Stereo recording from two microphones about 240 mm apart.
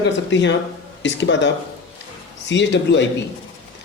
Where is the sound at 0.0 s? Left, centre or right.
Left.